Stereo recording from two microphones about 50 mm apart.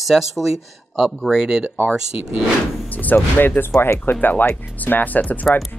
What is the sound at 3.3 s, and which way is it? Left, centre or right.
Speech, left.